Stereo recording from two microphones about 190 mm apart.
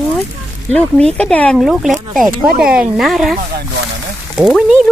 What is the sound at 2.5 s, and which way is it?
Speech, 50° right (ahead or behind).